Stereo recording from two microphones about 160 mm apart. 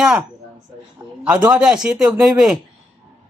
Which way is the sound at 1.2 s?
5° right (ahead or behind).